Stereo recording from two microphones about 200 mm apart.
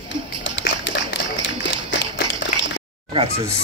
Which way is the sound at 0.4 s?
60° left (ahead or behind).